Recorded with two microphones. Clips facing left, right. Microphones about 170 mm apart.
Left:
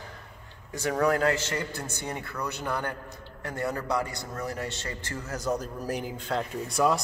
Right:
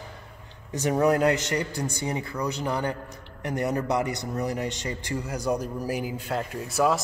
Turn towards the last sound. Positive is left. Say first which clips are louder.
# right 1 dB
turn(degrees=-5)  # may be behind; listen again after turning